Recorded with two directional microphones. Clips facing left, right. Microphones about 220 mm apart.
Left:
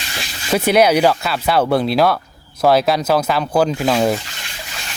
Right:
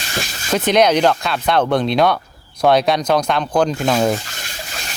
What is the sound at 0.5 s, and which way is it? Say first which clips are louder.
Speech: left 1 dB; 10° left (ahead or behind).